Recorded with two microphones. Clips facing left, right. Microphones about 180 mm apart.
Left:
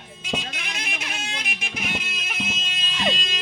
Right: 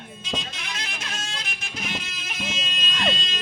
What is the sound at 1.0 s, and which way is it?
Music, 15° left (ahead or behind).